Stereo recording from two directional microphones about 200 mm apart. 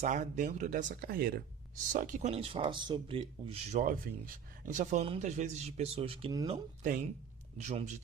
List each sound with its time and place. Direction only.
0.0 s speech: 40° right (ahead or behind); by 6.6 s 20° right (ahead or behind)
7.6 s speech: 35° right (ahead or behind)